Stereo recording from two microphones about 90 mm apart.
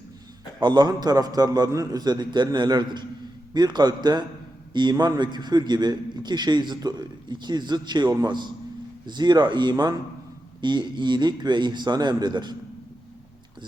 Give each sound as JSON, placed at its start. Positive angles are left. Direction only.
{"t": 0.6, "sound": "a man's voice", "side_deg": -50}